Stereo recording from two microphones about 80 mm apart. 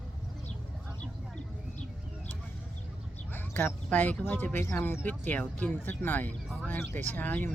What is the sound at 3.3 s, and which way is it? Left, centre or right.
Speech, left.